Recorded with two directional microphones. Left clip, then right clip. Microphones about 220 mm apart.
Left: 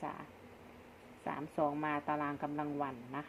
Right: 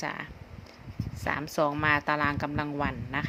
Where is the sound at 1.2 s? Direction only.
40° right (ahead or behind).